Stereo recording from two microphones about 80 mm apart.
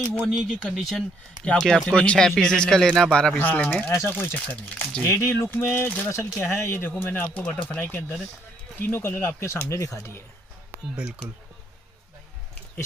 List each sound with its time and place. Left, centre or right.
0.1 s speech: centre
1.4 s speech: centre
3.9 s speech: left
5.0 s speech: left
6.0 s speech: left